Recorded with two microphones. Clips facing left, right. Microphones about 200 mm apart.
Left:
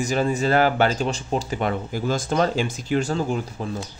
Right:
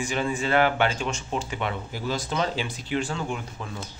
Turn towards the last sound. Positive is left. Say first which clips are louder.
# left 7 dB
turn(degrees=35)  # may be behind; listen again after turning